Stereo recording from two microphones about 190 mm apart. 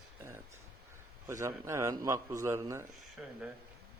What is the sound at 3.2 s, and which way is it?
Speech, 5° right (ahead or behind).